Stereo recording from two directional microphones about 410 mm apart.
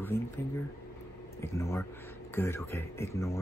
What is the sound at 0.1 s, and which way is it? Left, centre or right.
Speech, centre.